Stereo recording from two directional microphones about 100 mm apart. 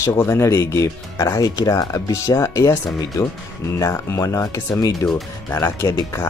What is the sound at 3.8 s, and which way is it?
Speech, 30° left (ahead or behind).